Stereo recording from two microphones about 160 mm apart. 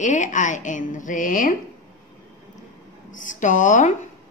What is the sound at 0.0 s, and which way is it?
A woman's voice, 50° left (ahead or behind).